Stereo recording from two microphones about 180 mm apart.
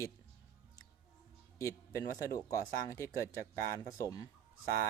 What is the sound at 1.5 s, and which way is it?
Speech, 15° left (ahead or behind).